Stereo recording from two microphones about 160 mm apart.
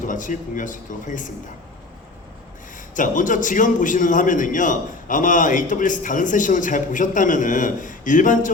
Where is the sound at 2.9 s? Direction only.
55° left (ahead or behind).